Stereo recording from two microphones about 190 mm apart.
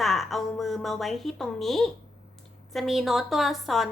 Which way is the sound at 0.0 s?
Centre (ahead or behind).